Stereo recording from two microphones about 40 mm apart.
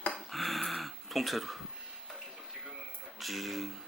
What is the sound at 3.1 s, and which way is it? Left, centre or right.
Speech, centre.